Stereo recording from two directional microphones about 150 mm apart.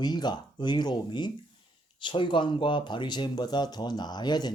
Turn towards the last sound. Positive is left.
turn(degrees=30)  # may be behind; listen again after turning